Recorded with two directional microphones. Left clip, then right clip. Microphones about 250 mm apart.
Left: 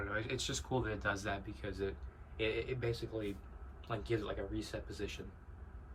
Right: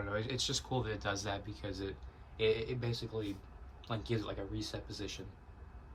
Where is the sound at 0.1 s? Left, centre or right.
Centre.